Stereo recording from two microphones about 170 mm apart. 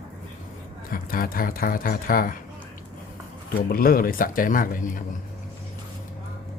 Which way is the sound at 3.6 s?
60° left (ahead or behind).